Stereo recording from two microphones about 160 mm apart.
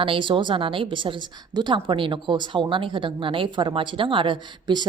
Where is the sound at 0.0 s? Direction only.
30° right (ahead or behind).